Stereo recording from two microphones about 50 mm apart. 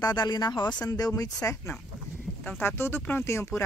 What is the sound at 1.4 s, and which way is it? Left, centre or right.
Speech, left.